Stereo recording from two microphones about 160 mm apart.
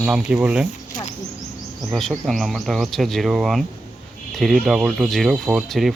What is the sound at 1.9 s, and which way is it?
Speech, centre (ahead or behind).